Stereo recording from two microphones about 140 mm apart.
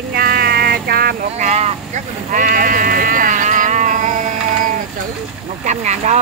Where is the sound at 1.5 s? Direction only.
55° right (ahead or behind).